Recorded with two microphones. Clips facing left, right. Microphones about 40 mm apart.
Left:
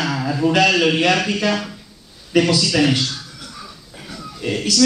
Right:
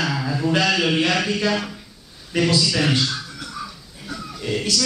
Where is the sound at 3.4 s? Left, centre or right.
Centre.